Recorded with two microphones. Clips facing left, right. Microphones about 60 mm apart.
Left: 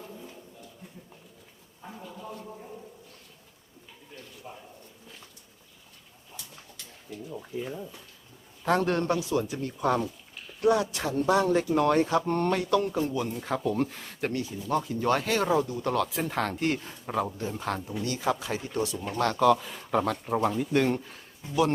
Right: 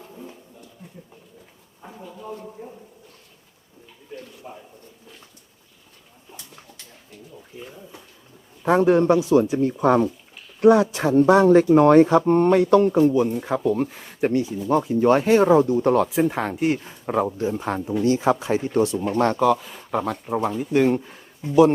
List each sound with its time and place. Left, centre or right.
1.9 s a sound: centre
4.4 s speech: right
8.6 s speech: centre; by 10.1 s right
10.6 s speech: right
10.9 s speech: right; by 12.6 s centre
12.7 s speech: right
16.0 s speech: centre
17.1 s speech: right
19.4 s speech: centre
21.4 s speech: right